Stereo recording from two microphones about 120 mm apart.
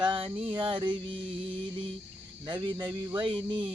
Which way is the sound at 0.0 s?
45° right (ahead or behind).